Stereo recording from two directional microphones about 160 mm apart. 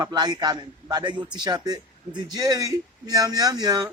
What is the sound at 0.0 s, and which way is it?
A man's voice, 25° right (ahead or behind).